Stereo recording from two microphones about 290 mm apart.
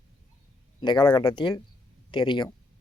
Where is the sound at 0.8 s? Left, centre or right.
Centre.